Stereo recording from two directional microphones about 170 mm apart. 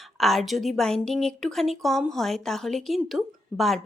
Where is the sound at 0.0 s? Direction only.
Centre (ahead or behind).